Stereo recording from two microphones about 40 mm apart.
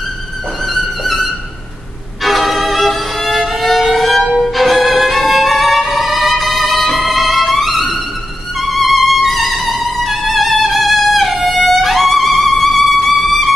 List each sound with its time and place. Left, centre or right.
2.2 s violin: centre
4.6 s music: centre
8.5 s violin: centre